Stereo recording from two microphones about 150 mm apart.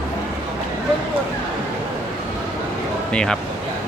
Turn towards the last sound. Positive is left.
turn(degrees=5)  # may be behind; listen again after turning